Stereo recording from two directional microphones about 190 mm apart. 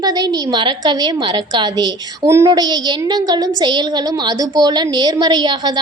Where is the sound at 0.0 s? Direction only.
20° right (ahead or behind).